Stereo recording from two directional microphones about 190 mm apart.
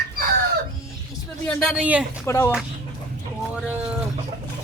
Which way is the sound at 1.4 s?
5° left (ahead or behind).